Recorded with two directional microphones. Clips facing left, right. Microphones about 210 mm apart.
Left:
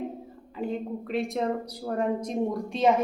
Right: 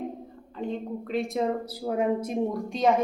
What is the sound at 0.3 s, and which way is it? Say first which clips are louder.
Speech: left 1 dB; 5° left (ahead or behind).